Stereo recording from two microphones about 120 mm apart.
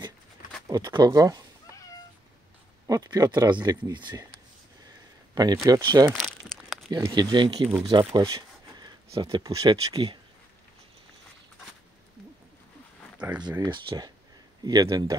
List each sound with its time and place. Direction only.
0.7 s speech: 35° right (ahead or behind)
2.9 s speech: 30° right (ahead or behind)
5.3 s speech: 35° right (ahead or behind)
6.1 s crumpling: centre (ahead or behind)
7.1 s speech: 40° right (ahead or behind)
8.1 s speech: 30° right (ahead or behind)
13.2 s speech: 10° right (ahead or behind)
13.7 s speech: 40° right (ahead or behind)